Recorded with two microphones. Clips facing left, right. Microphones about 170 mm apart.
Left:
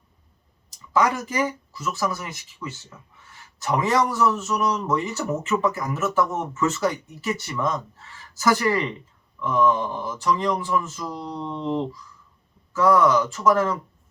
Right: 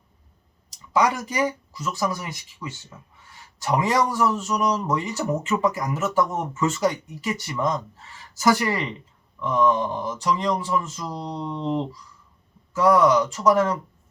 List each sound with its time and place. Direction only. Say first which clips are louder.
0.9 s speech: even; 15° right (ahead or behind)